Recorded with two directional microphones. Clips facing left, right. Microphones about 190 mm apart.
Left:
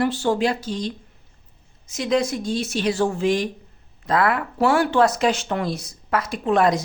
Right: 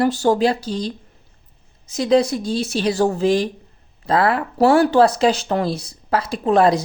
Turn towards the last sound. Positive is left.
turn(degrees=-30)  # may be behind; listen again after turning